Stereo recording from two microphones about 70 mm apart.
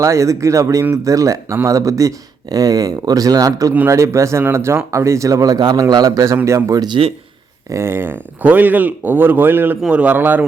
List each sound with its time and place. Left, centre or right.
0.0 s speech: right
3.8 s speech: right
6.1 s speech: right
7.7 s speech: right